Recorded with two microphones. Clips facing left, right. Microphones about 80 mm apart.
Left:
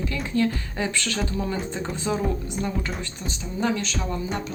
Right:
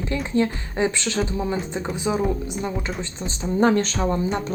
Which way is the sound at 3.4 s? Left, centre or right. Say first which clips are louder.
Right 7 dB; right.